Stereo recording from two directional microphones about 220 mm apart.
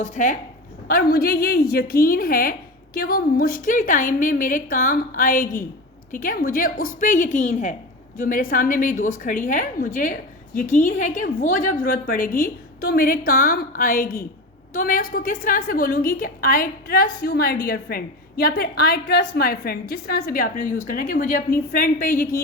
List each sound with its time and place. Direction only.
0.0 s a woman's voice: 35° left (ahead or behind)